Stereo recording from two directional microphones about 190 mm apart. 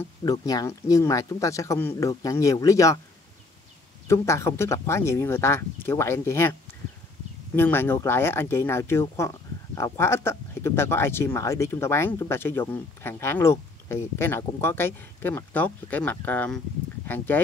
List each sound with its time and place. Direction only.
0.2 s speech: 20° left (ahead or behind)
4.1 s speech: 15° left (ahead or behind)
7.5 s speech: 10° left (ahead or behind)